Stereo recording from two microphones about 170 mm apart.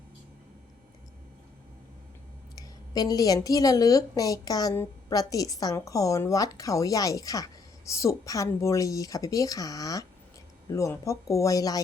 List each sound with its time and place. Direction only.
2.6 s a woman's voice: 20° left (ahead or behind)